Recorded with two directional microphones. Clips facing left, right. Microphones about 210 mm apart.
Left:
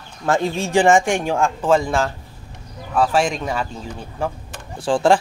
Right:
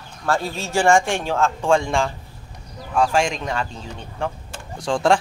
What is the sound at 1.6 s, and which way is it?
Speech, 5° left (ahead or behind).